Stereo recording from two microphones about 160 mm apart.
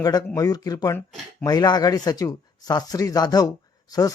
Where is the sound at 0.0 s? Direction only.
25° left (ahead or behind).